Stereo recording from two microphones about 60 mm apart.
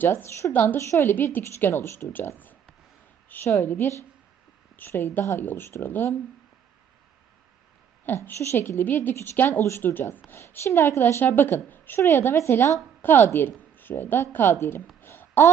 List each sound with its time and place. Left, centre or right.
0.1 s a woman's voice: left
0.5 s a woman's voice: left
0.8 s a woman's voice: left
1.0 s a woman's voice: left
3.4 s a woman's voice: left
5.4 s a woman's voice: left
8.0 s a woman's voice: left
9.1 s a woman's voice: left
11.2 s a woman's voice: left
11.9 s a woman's voice: left
13.0 s a woman's voice: left
15.0 s a sound: left